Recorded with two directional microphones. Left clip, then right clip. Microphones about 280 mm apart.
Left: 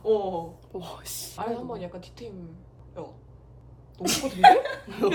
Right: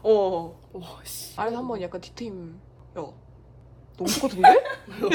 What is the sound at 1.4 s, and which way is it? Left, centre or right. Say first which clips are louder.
Speech: right 4 dB; right.